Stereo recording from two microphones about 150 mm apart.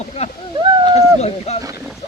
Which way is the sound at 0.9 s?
45° left (ahead or behind).